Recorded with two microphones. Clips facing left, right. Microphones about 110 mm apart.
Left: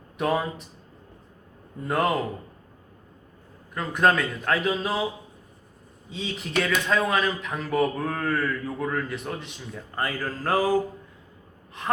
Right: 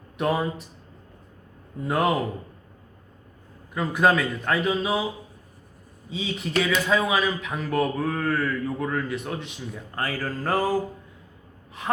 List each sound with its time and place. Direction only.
0.2 s speech: centre (ahead or behind)
1.8 s speech: 5° right (ahead or behind)
3.8 s speech: 5° right (ahead or behind)
6.1 s speech: centre (ahead or behind)
11.8 s speech: 5° right (ahead or behind)